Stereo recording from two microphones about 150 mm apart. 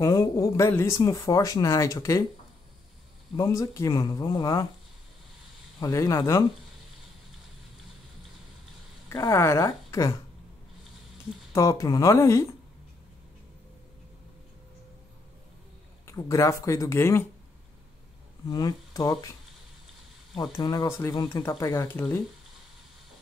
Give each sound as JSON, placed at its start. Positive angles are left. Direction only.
{"t": 0.0, "sound": "speech", "side_deg": 25}
{"t": 3.3, "sound": "speech", "side_deg": 25}
{"t": 5.8, "sound": "speech", "side_deg": 25}
{"t": 9.1, "sound": "speech", "side_deg": 20}
{"t": 9.8, "sound": "a sound", "side_deg": 20}
{"t": 11.5, "sound": "speech", "side_deg": 20}
{"t": 16.1, "sound": "speech", "side_deg": 20}
{"t": 18.5, "sound": "speech", "side_deg": 25}
{"t": 20.6, "sound": "speech", "side_deg": 25}